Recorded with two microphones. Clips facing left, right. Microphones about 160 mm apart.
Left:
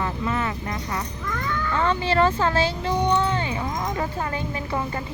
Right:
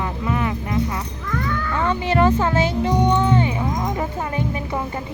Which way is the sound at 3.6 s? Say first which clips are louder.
Right 4 dB; 5° right (ahead or behind).